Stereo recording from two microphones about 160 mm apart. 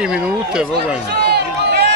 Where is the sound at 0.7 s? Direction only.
90° right.